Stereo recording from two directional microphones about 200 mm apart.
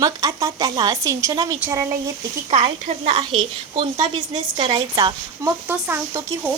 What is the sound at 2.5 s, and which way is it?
Speech, 35° right (ahead or behind).